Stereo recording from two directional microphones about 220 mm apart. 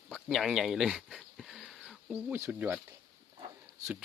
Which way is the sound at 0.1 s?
Centre (ahead or behind).